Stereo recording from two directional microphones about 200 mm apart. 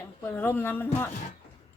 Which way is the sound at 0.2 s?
10° left (ahead or behind).